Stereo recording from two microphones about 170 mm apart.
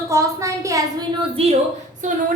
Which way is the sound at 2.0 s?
45° right (ahead or behind).